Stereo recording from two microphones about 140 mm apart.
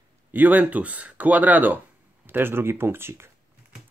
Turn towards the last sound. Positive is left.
turn(degrees=-15)  # may be behind; listen again after turning